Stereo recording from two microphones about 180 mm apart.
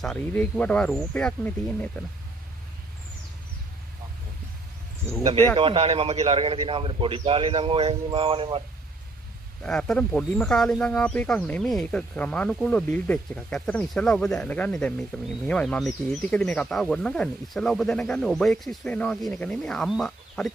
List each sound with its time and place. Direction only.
0.0 s speech: 5° left (ahead or behind)
5.6 s a man's voice: 30° right (ahead or behind)
9.6 s speech: 5° left (ahead or behind)